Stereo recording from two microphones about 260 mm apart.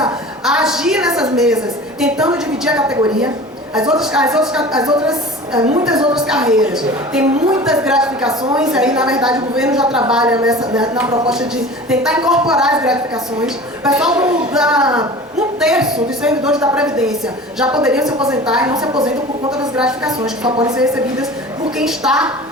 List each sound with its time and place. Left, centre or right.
0.0 s a sound: centre
2.0 s a woman's voice: centre
5.8 s a woman's voice: centre
18.6 s a woman's voice: centre
19.0 s a woman's voice: centre